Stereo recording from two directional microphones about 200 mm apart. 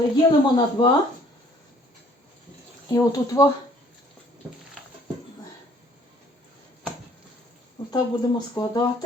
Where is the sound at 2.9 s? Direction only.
20° left (ahead or behind).